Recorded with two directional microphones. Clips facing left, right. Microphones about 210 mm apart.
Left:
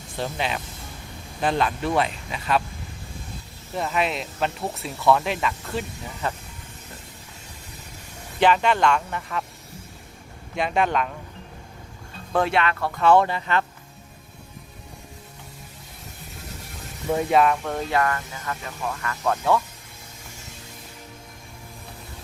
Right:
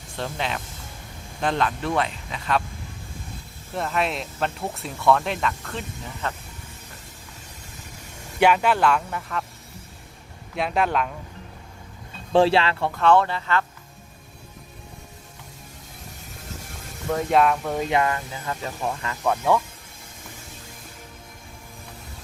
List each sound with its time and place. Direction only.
0.2 s speech: 5° left (ahead or behind)
3.8 s speech: centre (ahead or behind)
8.4 s speech: 10° right (ahead or behind)
10.5 s speech: centre (ahead or behind)
12.3 s speech: 30° right (ahead or behind)
12.9 s speech: 5° left (ahead or behind)
17.1 s speech: 5° left (ahead or behind)
17.8 s speech: 20° right (ahead or behind)
19.2 s speech: 10° right (ahead or behind)